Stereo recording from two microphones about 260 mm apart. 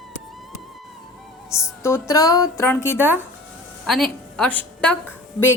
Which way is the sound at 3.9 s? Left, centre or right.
Centre.